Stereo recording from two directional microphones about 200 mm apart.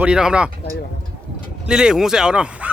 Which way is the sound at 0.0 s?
5° right (ahead or behind).